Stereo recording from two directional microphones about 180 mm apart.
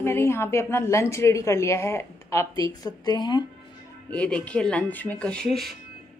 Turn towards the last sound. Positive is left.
turn(degrees=0)  # may be behind; listen again after turning